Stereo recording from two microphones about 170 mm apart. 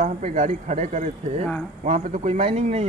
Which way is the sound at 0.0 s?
45° right (ahead or behind).